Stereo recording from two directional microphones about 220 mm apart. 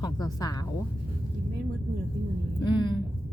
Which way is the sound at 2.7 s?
20° left (ahead or behind).